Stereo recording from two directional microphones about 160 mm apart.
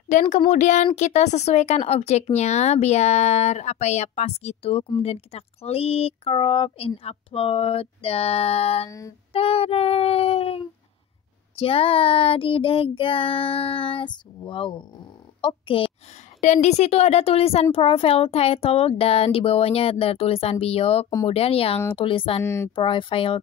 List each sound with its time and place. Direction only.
0.1 s speech: 50° left (ahead or behind); by 15.9 s 35° left (ahead or behind)
16.3 s speech: 45° left (ahead or behind)
22.4 s speech: 15° left (ahead or behind)
22.8 s speech: 30° left (ahead or behind)